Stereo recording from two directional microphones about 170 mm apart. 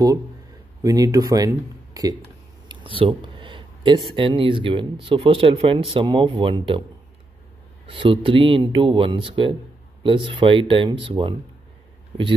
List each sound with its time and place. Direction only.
0.8 s speech: 20° right (ahead or behind)
7.8 s speech: 30° right (ahead or behind)